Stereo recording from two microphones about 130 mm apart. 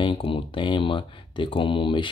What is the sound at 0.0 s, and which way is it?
Speech, 40° left (ahead or behind).